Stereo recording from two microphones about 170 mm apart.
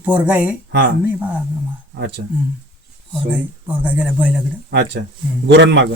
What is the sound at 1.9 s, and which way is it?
Speech, 90° right.